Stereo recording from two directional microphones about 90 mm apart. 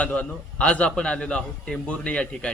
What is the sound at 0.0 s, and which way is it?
A man's voice, 15° left (ahead or behind).